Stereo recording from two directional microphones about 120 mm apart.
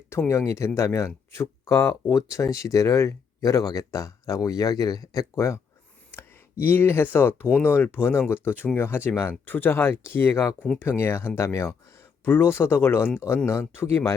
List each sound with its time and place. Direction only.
0.1 s speech: 20° left (ahead or behind)